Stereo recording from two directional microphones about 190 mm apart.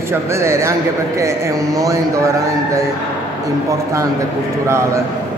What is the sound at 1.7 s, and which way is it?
A man's voice, 15° right (ahead or behind).